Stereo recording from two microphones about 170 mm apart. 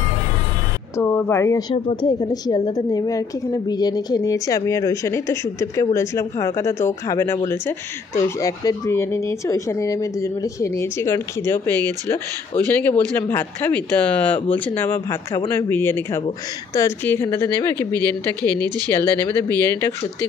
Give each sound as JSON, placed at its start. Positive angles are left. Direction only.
{"t": 0.9, "sound": "a woman's voice", "side_deg": 15}
{"t": 12.8, "sound": "speech", "side_deg": 10}